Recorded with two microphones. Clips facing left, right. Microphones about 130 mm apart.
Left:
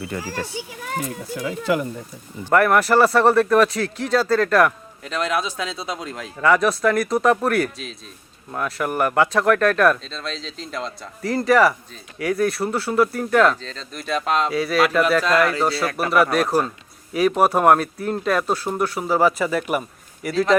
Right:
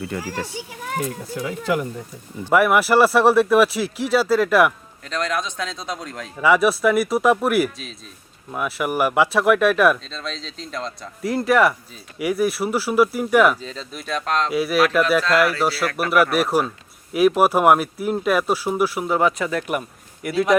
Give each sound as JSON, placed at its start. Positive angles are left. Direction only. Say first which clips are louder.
{"t": 2.5, "sound": "speech", "louder": "even", "side_deg": -5}
{"t": 15.7, "sound": "a man's voice", "louder": "even", "side_deg": 25}
{"t": 16.1, "sound": "speech", "louder": "even", "side_deg": -5}